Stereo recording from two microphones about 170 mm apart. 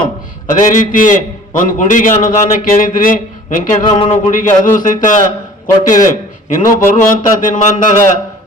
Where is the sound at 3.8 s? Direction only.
30° left (ahead or behind).